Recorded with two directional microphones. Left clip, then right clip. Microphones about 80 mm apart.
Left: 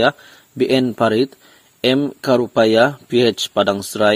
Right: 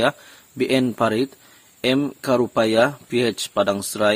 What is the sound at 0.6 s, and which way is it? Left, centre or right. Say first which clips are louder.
Speech: left 4 dB; left.